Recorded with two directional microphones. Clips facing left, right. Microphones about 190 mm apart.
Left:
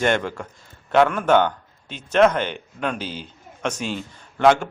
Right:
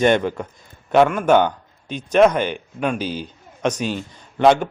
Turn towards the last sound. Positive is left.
turn(degrees=-20)  # may be behind; listen again after turning